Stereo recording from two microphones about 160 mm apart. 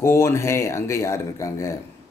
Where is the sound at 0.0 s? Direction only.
15° left (ahead or behind).